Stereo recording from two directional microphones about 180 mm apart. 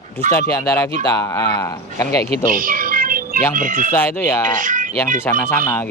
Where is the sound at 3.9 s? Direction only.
10° left (ahead or behind).